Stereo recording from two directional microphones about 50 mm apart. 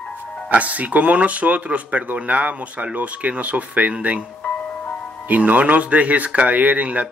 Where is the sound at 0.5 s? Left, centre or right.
Right.